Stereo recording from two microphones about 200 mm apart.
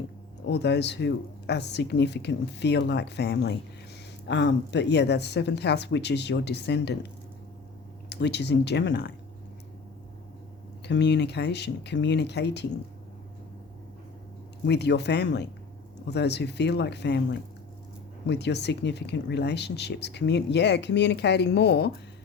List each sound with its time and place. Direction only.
0.4 s speech: 60° left (ahead or behind)
8.1 s speech: 60° left (ahead or behind)
10.8 s speech: 60° left (ahead or behind)
14.7 s speech: 60° left (ahead or behind)
18.3 s speech: 55° left (ahead or behind)